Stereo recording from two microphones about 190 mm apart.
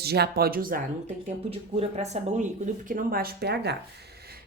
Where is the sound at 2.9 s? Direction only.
50° right (ahead or behind).